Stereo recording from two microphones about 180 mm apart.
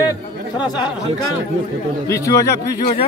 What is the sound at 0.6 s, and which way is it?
Speech, 25° left (ahead or behind).